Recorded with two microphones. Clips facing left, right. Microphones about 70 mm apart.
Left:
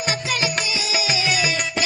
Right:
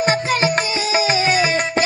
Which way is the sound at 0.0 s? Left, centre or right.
Right.